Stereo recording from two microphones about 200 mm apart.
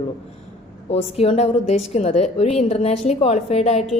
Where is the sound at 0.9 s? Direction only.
30° left (ahead or behind).